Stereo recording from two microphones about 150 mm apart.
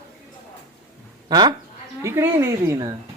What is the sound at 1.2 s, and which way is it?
Speech, 30° right (ahead or behind).